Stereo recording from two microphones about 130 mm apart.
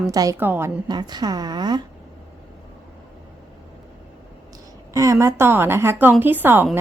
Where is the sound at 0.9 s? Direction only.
30° right (ahead or behind).